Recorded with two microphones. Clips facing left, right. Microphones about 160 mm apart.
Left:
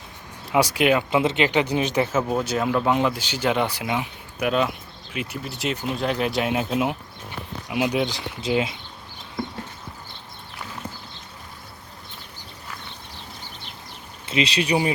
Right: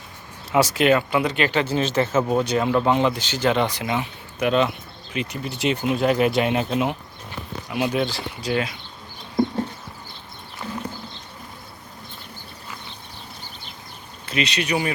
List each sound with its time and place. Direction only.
0.5 s speech: 10° left (ahead or behind)
1.1 s speech: 25° left (ahead or behind)
14.3 s speech: 30° left (ahead or behind)